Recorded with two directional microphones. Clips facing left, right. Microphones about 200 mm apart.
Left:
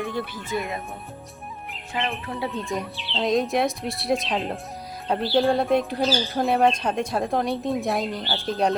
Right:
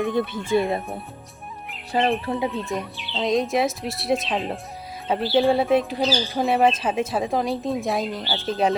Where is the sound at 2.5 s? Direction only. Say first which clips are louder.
Right 1 dB; centre (ahead or behind).